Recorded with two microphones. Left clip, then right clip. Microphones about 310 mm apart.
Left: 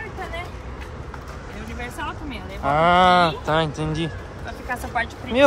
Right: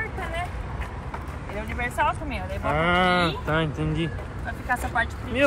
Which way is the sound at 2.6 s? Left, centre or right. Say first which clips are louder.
Left 6 dB; centre.